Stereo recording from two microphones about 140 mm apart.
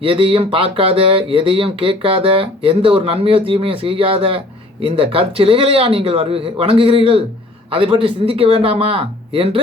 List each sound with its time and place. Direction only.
0.0 s speech: 40° right (ahead or behind)